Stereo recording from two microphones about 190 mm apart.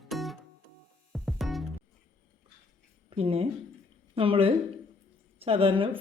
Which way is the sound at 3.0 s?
30° right (ahead or behind).